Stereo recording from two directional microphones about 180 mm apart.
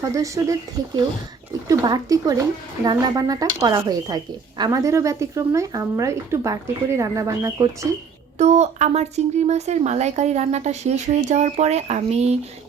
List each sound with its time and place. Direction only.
0.0 s speech: 20° right (ahead or behind)
1.6 s speech: 20° right (ahead or behind)
8.4 s speech: 40° right (ahead or behind)